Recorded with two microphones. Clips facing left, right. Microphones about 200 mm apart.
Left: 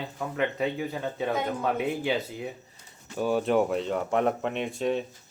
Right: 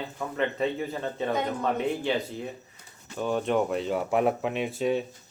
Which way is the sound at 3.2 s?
5° left (ahead or behind).